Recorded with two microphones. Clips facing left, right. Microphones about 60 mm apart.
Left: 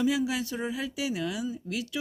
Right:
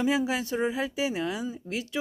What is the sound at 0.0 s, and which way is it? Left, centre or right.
Speech, right.